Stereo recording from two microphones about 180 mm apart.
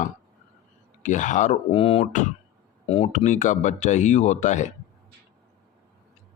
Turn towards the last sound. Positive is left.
turn(degrees=40)  # may be behind; listen again after turning